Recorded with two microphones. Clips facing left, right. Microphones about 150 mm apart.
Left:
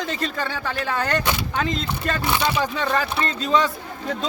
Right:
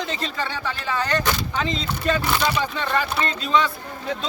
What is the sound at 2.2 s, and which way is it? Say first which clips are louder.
Speech: even; 25° left (ahead or behind).